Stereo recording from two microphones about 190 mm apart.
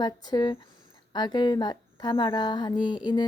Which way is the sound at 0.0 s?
20° left (ahead or behind).